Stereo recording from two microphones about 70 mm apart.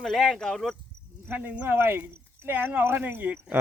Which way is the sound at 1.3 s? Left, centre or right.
Centre.